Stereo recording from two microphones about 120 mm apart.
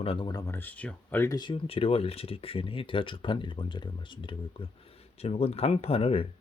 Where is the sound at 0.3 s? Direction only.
30° left (ahead or behind).